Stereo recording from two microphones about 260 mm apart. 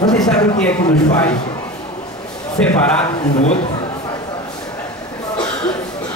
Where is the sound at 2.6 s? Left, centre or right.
Centre.